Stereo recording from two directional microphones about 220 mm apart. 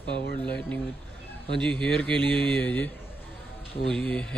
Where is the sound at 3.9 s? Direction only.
5° left (ahead or behind).